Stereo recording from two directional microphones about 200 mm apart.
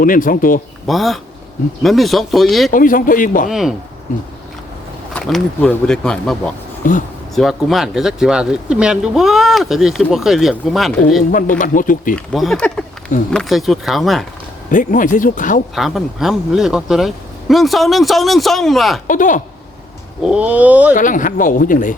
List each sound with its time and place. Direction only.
0.0 s a man's voice: 45° left (ahead or behind)
0.9 s speech: centre (ahead or behind)
2.7 s a man's voice: 45° left (ahead or behind)
3.5 s speech: centre (ahead or behind)
5.1 s speech: 5° left (ahead or behind)
6.8 s speech: 40° left (ahead or behind)
7.3 s speech: centre (ahead or behind)
11.3 s speech: 40° left (ahead or behind)
12.1 s speech: centre (ahead or behind)
14.7 s speech: 40° left (ahead or behind)
15.7 s speech: centre (ahead or behind)
19.0 s speech: 40° left (ahead or behind)
20.2 s speech: 5° right (ahead or behind)
20.9 s speech: 40° left (ahead or behind)